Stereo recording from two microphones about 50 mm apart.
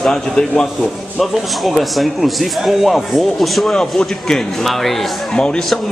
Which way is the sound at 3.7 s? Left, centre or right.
Centre.